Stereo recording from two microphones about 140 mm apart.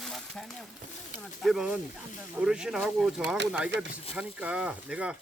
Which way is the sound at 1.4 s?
5° right (ahead or behind).